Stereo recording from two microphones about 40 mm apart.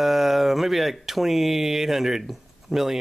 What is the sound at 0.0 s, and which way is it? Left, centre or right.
Speech, centre.